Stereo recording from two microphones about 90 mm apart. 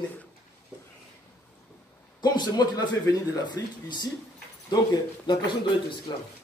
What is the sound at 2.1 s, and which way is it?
Speech, 50° left (ahead or behind).